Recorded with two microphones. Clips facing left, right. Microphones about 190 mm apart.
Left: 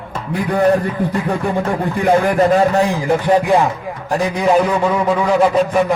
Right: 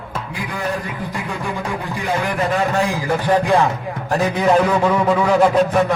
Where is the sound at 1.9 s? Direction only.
50° left (ahead or behind).